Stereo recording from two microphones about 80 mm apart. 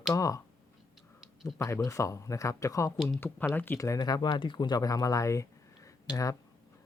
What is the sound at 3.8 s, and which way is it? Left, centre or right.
Speech, left.